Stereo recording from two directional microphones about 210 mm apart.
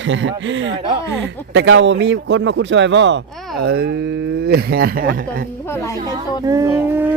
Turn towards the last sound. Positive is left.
turn(degrees=-10)  # may be behind; listen again after turning